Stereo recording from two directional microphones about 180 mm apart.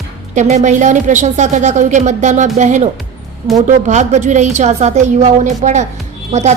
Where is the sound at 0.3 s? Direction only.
40° right (ahead or behind).